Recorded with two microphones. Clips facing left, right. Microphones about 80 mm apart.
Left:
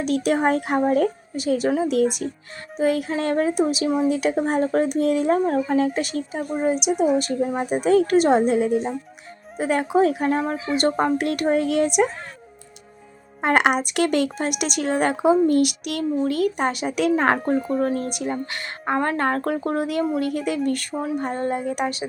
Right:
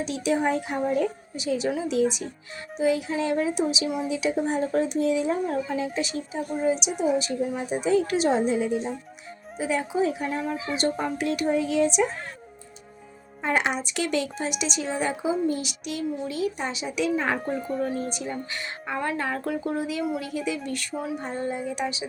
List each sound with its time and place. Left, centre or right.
0.0 s a woman's voice: left
13.4 s a woman's voice: left